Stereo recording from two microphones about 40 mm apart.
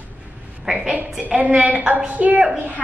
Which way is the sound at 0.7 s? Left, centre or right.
Centre.